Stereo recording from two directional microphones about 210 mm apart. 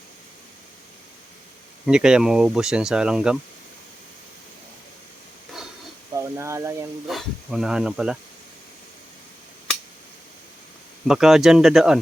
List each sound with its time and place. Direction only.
1.9 s speech: 5° right (ahead or behind)
6.1 s speech: 15° right (ahead or behind)
7.1 s speech: centre (ahead or behind)
11.1 s speech: centre (ahead or behind)